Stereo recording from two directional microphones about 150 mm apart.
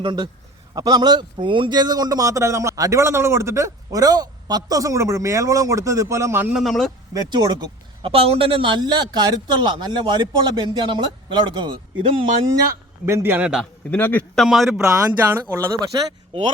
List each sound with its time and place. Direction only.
0.0 s a man's voice: 30° right (ahead or behind)
6.5 s a man's voice: centre (ahead or behind)
7.1 s a man's voice: 25° right (ahead or behind)
13.1 s speech: 15° right (ahead or behind)
13.9 s speech: 10° left (ahead or behind)
14.4 s a man's voice: 5° right (ahead or behind)
14.8 s speech: 15° right (ahead or behind)